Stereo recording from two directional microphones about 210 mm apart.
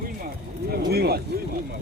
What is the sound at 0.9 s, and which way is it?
Speech, 50° right (ahead or behind).